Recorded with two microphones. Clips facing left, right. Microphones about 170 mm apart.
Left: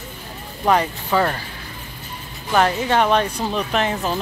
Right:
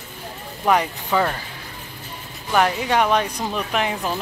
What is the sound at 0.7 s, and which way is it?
Speech, 10° right (ahead or behind).